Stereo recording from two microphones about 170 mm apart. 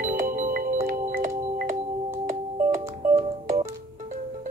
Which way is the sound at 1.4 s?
45° right (ahead or behind).